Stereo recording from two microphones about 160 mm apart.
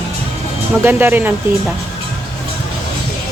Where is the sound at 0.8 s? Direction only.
15° right (ahead or behind).